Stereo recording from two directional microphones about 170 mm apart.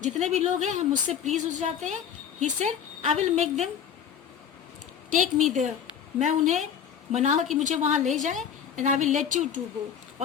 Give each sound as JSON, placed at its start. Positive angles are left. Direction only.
{"t": 0.0, "sound": "a woman's voice", "side_deg": -40}
{"t": 5.2, "sound": "a woman's voice", "side_deg": 0}
{"t": 6.1, "sound": "a woman's voice", "side_deg": -45}